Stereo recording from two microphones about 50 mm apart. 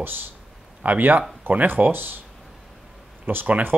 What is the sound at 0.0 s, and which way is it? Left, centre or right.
Speech, right.